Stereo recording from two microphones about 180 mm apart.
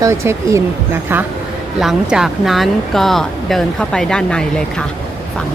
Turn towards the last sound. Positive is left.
turn(degrees=5)  # may be behind; listen again after turning